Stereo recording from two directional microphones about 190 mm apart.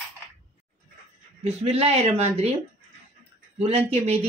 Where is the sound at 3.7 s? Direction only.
30° right (ahead or behind).